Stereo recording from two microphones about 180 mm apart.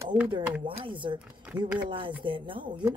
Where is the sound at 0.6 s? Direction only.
25° right (ahead or behind).